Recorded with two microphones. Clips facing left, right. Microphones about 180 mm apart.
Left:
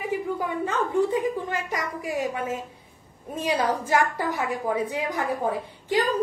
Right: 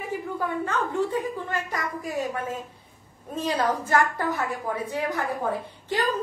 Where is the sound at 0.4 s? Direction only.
15° left (ahead or behind).